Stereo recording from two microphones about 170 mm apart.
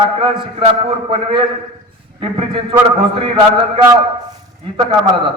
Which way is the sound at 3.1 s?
30° right (ahead or behind).